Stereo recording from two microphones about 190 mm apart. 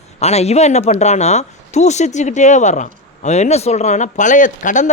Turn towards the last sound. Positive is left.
turn(degrees=40)  # may be behind; listen again after turning